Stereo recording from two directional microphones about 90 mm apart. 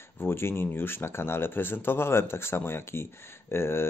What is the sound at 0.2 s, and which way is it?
Speech, 25° left (ahead or behind).